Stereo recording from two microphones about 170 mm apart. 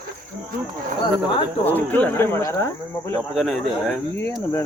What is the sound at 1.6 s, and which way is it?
Speech, 10° left (ahead or behind).